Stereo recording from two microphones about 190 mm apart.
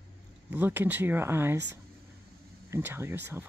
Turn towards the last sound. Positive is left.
turn(degrees=-10)  # may be behind; listen again after turning